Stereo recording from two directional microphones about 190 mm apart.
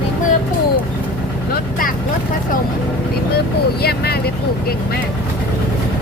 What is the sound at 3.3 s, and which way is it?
Speech, 55° left (ahead or behind).